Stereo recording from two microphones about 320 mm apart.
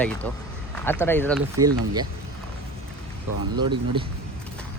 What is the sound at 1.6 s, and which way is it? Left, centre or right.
Speech, right.